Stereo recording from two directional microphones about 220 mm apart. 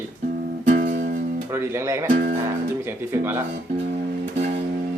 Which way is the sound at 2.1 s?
45° right (ahead or behind).